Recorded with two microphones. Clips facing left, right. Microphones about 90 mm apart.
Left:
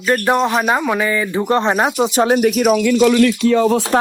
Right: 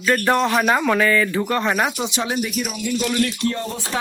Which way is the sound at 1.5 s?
30° left (ahead or behind).